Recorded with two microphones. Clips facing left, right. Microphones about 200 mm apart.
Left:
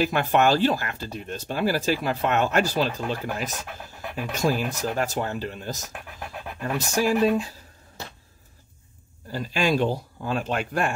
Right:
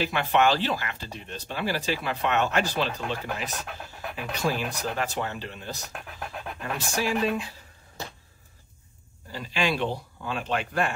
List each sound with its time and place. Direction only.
0.0 s speech: 45° left (ahead or behind)
5.9 s speech: centre (ahead or behind)
6.8 s speech: 40° left (ahead or behind)
9.3 s speech: 45° left (ahead or behind)